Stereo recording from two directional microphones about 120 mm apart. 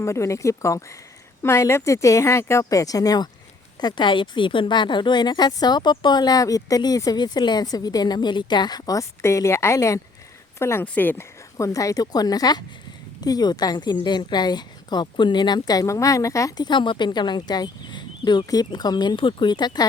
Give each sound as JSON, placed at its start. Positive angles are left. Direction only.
{"t": 0.0, "sound": "a woman's voice", "side_deg": 25}